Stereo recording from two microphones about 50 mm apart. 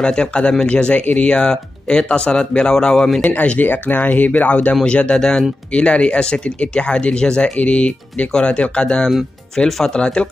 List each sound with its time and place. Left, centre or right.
0.0 s speech: centre
3.3 s speech: left
9.7 s speech: centre
9.9 s speech: centre